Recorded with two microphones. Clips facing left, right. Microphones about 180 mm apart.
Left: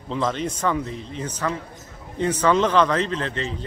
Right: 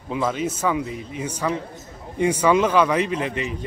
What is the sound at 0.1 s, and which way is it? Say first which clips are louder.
Speech: right 1 dB; 5° right (ahead or behind).